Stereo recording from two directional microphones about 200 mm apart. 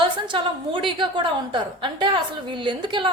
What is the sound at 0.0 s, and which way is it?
A woman's voice, 25° right (ahead or behind).